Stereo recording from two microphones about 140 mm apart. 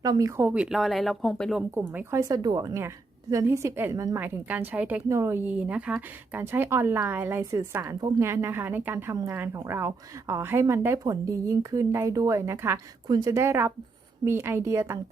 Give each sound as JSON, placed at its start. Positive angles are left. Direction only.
{"t": 0.0, "sound": "a woman's voice", "side_deg": -25}
{"t": 1.9, "sound": "a woman's voice", "side_deg": -15}
{"t": 5.0, "sound": "a woman's voice", "side_deg": -20}